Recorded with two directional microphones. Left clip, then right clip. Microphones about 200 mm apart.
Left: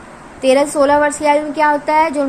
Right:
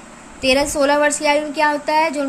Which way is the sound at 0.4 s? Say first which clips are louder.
Left 4 dB; 20° right (ahead or behind).